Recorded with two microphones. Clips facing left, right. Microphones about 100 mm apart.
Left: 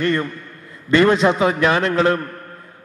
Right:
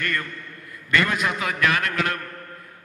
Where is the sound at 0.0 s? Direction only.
25° left (ahead or behind).